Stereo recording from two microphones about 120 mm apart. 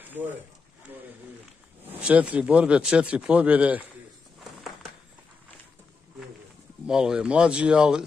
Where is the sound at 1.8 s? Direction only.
15° right (ahead or behind).